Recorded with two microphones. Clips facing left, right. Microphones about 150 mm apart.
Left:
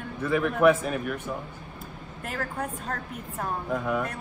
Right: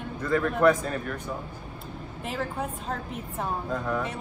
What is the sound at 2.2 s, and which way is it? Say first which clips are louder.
Speech: right 1 dB; centre (ahead or behind).